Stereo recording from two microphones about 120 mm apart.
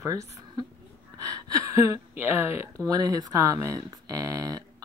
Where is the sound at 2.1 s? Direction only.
20° right (ahead or behind).